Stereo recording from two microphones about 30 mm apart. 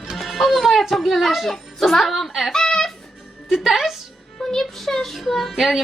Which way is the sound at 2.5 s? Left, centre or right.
Centre.